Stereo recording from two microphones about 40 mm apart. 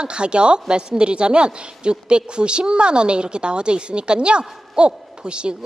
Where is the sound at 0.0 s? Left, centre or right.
Right.